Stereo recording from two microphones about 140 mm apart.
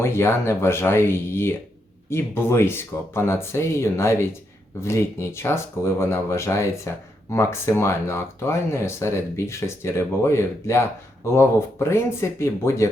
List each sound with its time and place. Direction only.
0.0 s speech: 20° left (ahead or behind)